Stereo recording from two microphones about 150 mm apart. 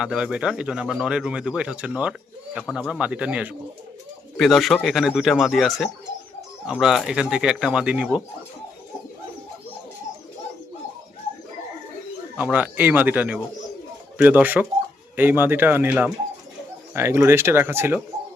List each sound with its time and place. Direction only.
0.0 s speech: 5° right (ahead or behind)
12.4 s speech: 10° right (ahead or behind)